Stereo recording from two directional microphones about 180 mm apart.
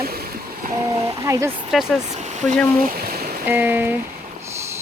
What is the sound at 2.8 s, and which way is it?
Speech, 55° right (ahead or behind).